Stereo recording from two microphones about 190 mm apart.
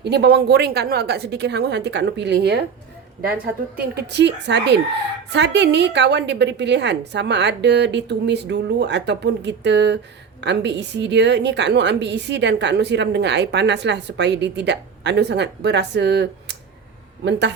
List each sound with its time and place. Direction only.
0.0 s a woman's voice: 60° right (ahead or behind)